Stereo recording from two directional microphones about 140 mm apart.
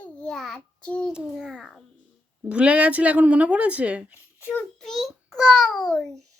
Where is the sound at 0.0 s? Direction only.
5° left (ahead or behind).